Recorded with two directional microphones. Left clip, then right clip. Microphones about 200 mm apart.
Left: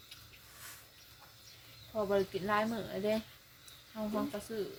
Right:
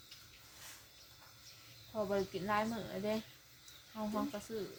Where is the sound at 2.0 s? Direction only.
Centre (ahead or behind).